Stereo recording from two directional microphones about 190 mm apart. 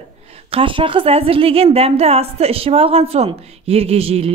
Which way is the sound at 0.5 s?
30° right (ahead or behind).